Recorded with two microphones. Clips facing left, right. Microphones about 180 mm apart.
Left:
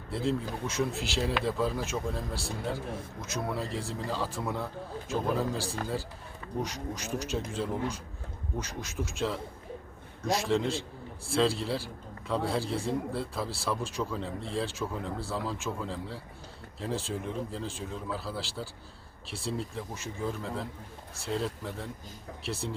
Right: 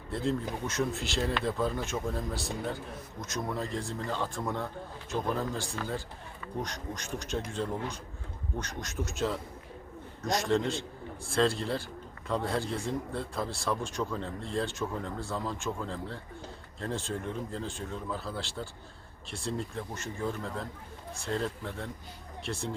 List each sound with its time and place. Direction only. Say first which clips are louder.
0.1 s speech: even; centre (ahead or behind)
5.5 s speech: left 2 dB; 35° left (ahead or behind)
6.6 s speech: left 3 dB; 5° left (ahead or behind)